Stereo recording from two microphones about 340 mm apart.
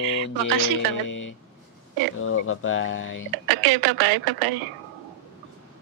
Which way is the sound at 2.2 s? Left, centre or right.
Left.